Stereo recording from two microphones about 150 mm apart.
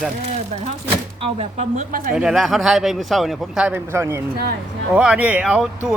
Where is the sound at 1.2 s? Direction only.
45° right (ahead or behind).